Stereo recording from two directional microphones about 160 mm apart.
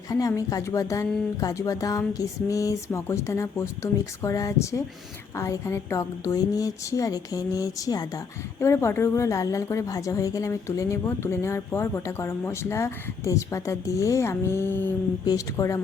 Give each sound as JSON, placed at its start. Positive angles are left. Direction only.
{"t": 0.1, "sound": "a woman's voice", "side_deg": 20}